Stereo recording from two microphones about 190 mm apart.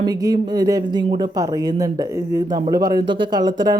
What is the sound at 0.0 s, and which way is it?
Speech, 20° right (ahead or behind).